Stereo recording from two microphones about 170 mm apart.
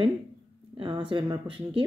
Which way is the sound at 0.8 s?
30° right (ahead or behind).